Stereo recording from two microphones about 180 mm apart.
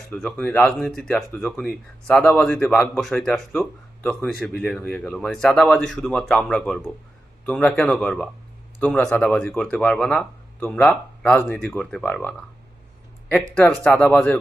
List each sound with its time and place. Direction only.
0.1 s speech: 5° left (ahead or behind)
13.5 s speech: 5° left (ahead or behind)